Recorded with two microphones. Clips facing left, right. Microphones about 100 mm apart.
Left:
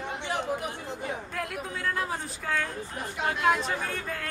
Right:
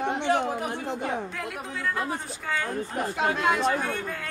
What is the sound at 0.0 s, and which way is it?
Chatter, 60° right (ahead or behind).